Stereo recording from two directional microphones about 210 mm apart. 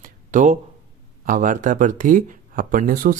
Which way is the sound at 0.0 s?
35° right (ahead or behind).